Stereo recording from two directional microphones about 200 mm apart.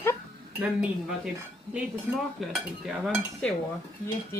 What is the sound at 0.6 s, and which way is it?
Speech, 5° right (ahead or behind).